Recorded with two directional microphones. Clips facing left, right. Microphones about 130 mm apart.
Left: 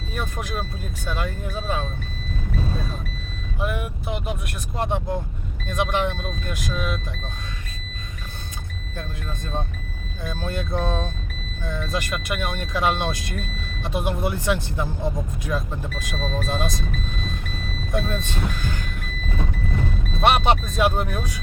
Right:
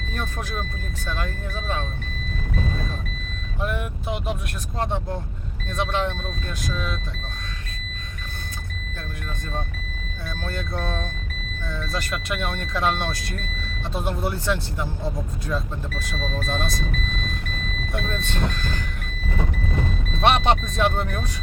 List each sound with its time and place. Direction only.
0.1 s speech: 10° left (ahead or behind)
3.6 s speech: 5° left (ahead or behind)
10.2 s speech: 15° left (ahead or behind)
16.1 s speech: 40° left (ahead or behind)
16.4 s speech: 15° left (ahead or behind)
17.9 s speech: 15° left (ahead or behind)
20.2 s speech: 5° left (ahead or behind)